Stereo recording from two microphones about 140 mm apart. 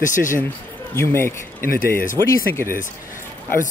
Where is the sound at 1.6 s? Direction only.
90° left.